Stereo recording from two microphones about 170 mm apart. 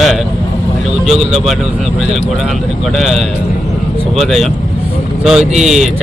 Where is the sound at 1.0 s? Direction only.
Centre (ahead or behind).